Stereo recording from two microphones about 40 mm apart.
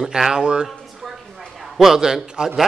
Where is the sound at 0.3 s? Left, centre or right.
Centre.